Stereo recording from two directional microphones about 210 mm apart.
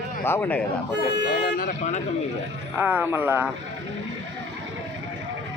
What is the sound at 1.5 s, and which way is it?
Speech, 40° left (ahead or behind).